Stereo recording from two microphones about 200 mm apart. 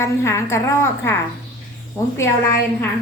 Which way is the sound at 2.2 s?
15° left (ahead or behind).